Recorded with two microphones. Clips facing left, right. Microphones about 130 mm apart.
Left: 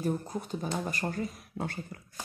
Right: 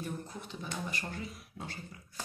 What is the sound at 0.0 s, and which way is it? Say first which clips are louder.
Speech: left 9 dB; 40° left (ahead or behind).